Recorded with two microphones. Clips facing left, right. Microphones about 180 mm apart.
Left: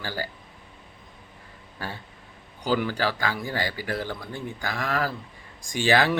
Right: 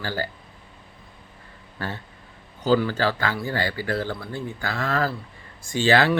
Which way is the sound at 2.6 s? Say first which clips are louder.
Right 4 dB; 15° left (ahead or behind).